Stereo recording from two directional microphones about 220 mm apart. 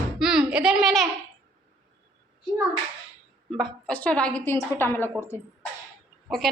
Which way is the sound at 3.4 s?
5° left (ahead or behind).